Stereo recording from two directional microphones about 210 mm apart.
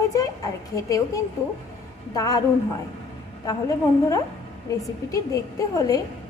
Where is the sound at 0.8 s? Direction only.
15° left (ahead or behind).